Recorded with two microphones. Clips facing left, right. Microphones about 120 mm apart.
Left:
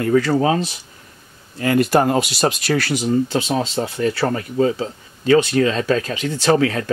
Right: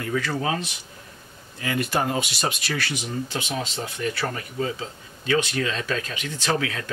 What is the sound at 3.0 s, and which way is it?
Speech, 30° left (ahead or behind).